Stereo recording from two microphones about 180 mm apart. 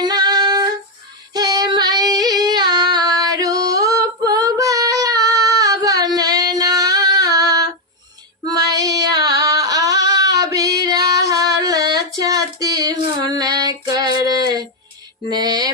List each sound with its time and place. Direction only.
0.0 s female singing: 25° right (ahead or behind)
8.5 s child singing: 20° right (ahead or behind)
9.1 s singing: 20° right (ahead or behind)
10.8 s female singing: 20° right (ahead or behind)
15.3 s mantra: 20° right (ahead or behind)